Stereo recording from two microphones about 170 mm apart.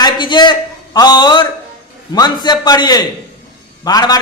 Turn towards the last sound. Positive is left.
turn(degrees=20)  # may be behind; listen again after turning